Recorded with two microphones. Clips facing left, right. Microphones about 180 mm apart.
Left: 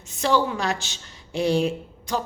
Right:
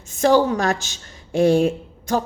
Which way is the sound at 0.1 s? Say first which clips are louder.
Right 6 dB; 45° right (ahead or behind).